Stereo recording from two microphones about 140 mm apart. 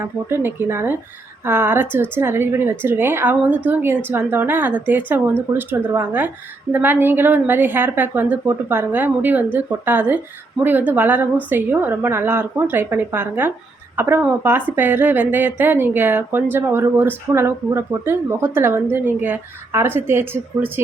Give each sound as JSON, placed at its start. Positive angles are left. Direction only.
{"t": 0.0, "sound": "a woman's voice", "side_deg": -15}